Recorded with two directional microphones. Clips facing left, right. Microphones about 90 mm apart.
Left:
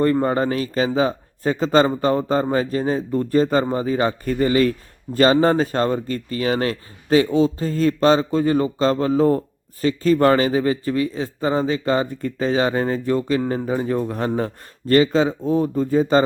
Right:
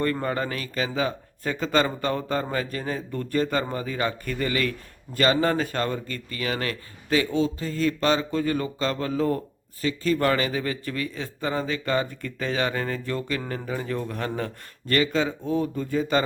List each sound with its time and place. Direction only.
0.0 s speech: 25° left (ahead or behind)